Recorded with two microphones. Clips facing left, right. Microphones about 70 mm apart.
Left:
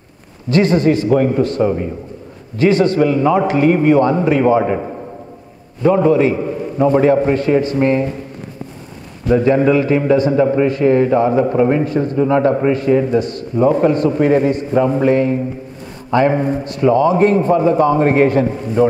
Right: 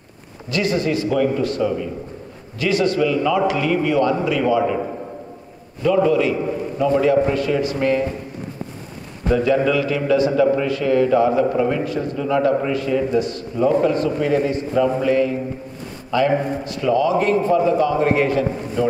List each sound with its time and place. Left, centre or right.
0.5 s a man's voice: left
6.0 s a man's voice: left
9.3 s a man's voice: left